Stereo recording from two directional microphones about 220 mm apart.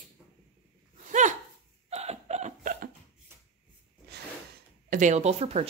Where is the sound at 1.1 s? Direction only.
35° right (ahead or behind).